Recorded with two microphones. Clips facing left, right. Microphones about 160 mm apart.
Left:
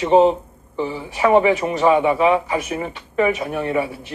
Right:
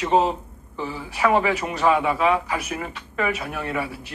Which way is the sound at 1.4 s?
25° left (ahead or behind).